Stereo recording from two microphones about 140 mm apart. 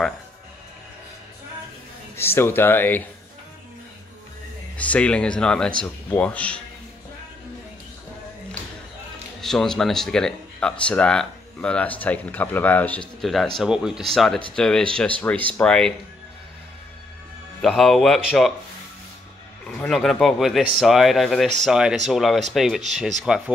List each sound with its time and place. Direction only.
2.1 s speech: 15° left (ahead or behind)
4.7 s speech: 10° left (ahead or behind)
9.4 s speech: centre (ahead or behind)
13.2 s speech: centre (ahead or behind)
17.6 s speech: centre (ahead or behind)
19.9 s speech: centre (ahead or behind)